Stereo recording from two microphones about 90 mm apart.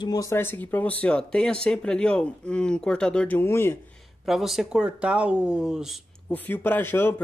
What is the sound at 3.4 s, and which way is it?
Speech, 25° left (ahead or behind).